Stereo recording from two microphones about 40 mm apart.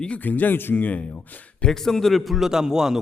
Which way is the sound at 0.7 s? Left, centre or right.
Left.